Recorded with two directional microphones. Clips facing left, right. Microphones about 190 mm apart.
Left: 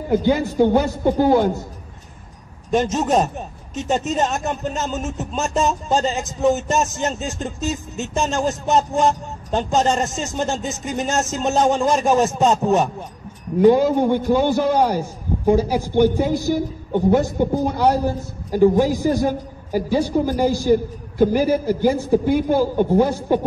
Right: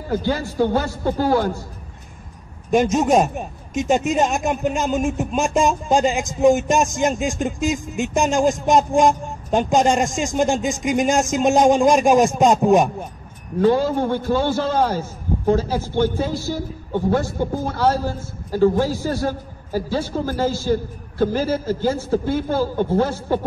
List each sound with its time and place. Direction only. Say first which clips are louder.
0.1 s a man's voice: left 4 dB; 20° left (ahead or behind)
2.7 s speech: right 2 dB; 10° right (ahead or behind)
13.6 s a man's voice: left 3 dB; 15° left (ahead or behind)